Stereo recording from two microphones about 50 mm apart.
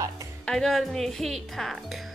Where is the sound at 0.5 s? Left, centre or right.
Centre.